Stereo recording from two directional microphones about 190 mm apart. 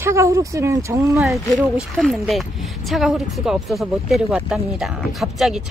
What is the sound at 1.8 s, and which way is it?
Speech, centre (ahead or behind).